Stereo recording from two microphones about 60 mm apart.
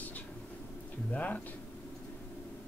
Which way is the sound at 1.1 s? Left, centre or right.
Left.